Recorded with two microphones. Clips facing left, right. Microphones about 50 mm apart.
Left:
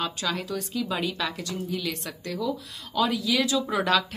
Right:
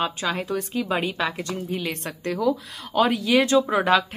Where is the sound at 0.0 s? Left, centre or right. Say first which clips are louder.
Right 4 dB; right.